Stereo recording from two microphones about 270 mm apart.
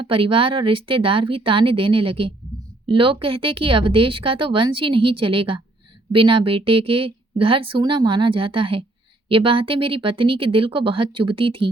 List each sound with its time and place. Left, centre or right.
0.0 s a woman's voice: centre